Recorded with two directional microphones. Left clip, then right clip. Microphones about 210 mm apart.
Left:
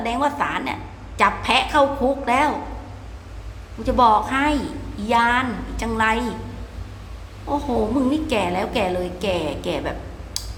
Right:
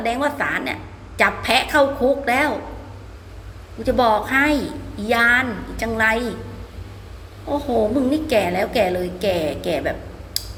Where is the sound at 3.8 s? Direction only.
5° right (ahead or behind).